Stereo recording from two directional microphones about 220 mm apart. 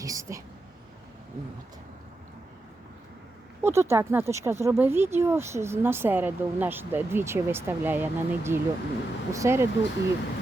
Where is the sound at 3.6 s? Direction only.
10° right (ahead or behind).